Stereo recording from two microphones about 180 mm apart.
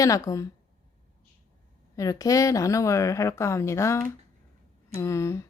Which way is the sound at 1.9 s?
20° left (ahead or behind).